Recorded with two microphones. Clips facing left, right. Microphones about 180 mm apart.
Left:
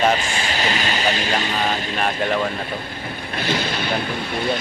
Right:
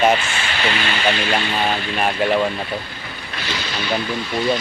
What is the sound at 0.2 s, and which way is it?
Speech, 40° left (ahead or behind).